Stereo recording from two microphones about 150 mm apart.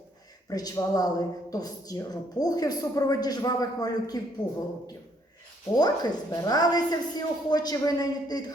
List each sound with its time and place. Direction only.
0.5 s a woman's voice: 25° left (ahead or behind)
5.7 s a woman's voice: 25° left (ahead or behind)